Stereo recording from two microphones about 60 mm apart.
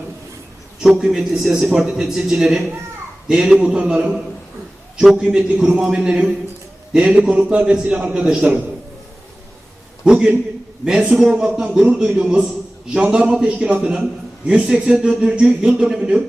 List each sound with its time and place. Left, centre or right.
0.8 s a man's voice: centre
10.0 s a man's voice: centre